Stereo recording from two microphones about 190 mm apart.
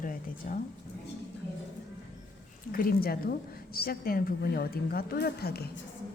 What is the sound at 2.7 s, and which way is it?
A woman's voice, 50° left (ahead or behind).